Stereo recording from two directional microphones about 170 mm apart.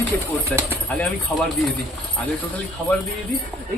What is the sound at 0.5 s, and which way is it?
Speech, 10° left (ahead or behind).